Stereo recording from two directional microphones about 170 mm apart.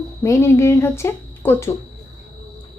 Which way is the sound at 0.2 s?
15° left (ahead or behind).